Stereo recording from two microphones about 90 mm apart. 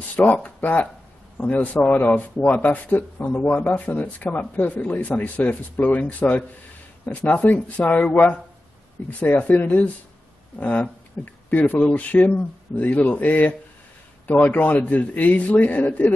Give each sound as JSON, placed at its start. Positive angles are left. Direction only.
{"t": 0.1, "sound": "speech", "side_deg": 20}